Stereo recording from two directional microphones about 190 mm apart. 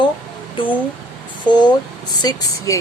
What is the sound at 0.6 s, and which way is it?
Speech, 25° left (ahead or behind).